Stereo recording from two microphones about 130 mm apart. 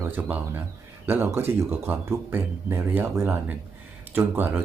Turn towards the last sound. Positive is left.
turn(degrees=-15)  # may be behind; listen again after turning